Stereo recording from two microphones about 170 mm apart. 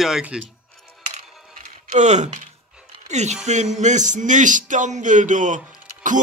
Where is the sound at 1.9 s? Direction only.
45° right (ahead or behind).